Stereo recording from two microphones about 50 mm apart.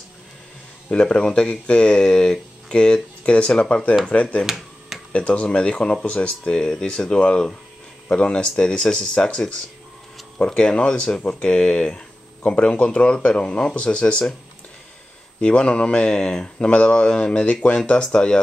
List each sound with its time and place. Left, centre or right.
0.8 s speech: left
4.5 s finger snapping: centre
5.1 s speech: left
15.4 s speech: centre